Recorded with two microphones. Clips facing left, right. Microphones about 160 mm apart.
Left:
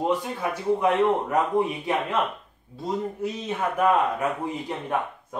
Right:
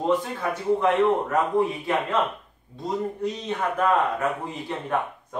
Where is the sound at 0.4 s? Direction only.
15° left (ahead or behind).